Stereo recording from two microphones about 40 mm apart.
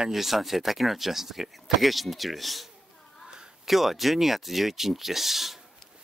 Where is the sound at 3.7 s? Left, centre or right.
Centre.